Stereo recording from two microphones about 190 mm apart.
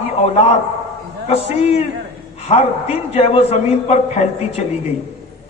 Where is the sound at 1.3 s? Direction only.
35° left (ahead or behind).